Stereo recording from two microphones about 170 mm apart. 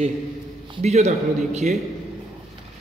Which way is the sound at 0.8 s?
40° right (ahead or behind).